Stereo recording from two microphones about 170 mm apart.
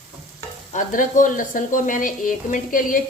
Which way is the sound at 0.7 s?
50° left (ahead or behind).